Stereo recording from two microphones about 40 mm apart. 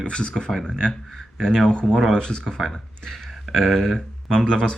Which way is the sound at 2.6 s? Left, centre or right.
Centre.